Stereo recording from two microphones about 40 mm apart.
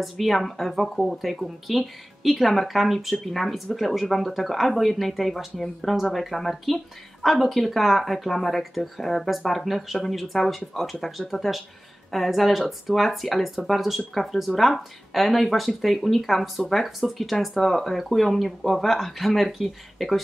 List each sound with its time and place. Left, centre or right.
0.0 s speech: centre